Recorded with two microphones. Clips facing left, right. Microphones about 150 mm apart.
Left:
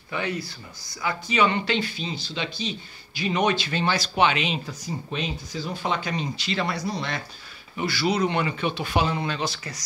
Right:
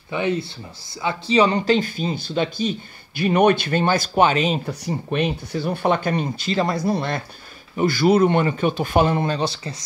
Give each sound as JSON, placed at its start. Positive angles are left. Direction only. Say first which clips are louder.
{"t": 0.1, "sound": "speech", "louder": "right 7 dB", "side_deg": -20}
{"t": 4.6, "sound": "speech", "louder": "right 7 dB", "side_deg": -60}
{"t": 9.4, "sound": "speech", "louder": "right 5 dB", "side_deg": -30}